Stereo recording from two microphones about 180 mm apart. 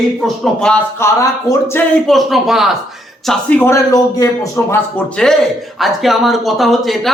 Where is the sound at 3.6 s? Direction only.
20° left (ahead or behind).